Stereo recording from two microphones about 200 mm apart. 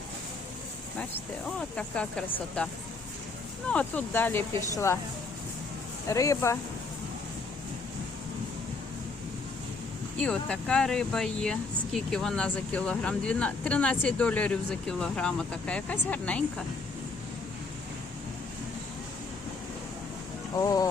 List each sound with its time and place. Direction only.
1.5 s speech: 5° left (ahead or behind)
3.7 s speech: 5° left (ahead or behind)
6.1 s speech: 15° left (ahead or behind)
10.2 s speech: 5° left (ahead or behind)
20.6 s speech: 15° left (ahead or behind)